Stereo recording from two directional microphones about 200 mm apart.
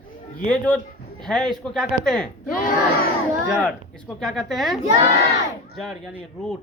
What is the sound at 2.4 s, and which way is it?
Speech, 45° left (ahead or behind).